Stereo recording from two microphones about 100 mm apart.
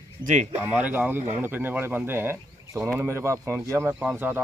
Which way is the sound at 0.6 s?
15° right (ahead or behind).